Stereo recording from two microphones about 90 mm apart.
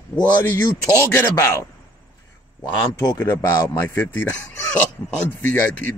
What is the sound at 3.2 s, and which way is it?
Speech, 20° left (ahead or behind).